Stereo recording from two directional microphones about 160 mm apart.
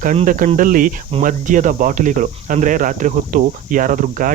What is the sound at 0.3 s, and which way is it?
Speech, 55° right (ahead or behind).